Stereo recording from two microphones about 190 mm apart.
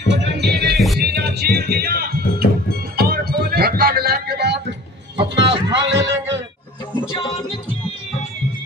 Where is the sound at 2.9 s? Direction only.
55° right (ahead or behind).